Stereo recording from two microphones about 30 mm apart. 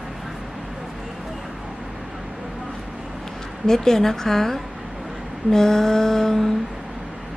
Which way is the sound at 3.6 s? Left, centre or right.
Centre.